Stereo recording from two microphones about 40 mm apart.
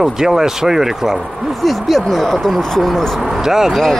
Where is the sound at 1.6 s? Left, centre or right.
Centre.